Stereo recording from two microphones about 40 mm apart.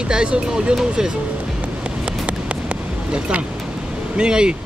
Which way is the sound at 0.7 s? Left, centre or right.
Centre.